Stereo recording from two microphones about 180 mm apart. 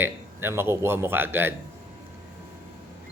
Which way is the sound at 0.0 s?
10° right (ahead or behind).